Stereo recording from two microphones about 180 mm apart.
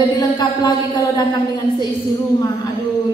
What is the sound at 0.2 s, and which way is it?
A man's voice, 20° left (ahead or behind).